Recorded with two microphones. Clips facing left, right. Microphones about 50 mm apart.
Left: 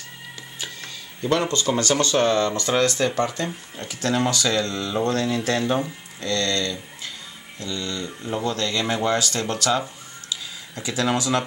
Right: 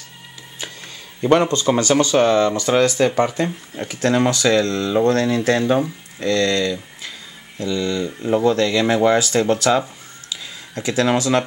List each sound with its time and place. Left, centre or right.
1.2 s speech: right
4.6 s speech: centre